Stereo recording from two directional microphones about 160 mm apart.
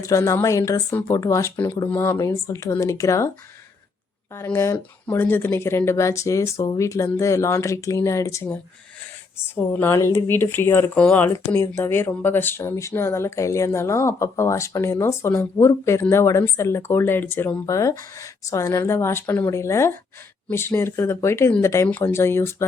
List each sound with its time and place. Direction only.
0.0 s speech: 20° left (ahead or behind)
4.4 s speech: 15° left (ahead or behind)
9.6 s speech: 10° left (ahead or behind)